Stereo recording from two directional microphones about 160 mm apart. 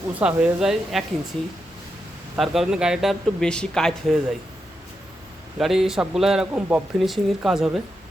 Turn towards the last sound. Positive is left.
turn(degrees=0)  # may be behind; listen again after turning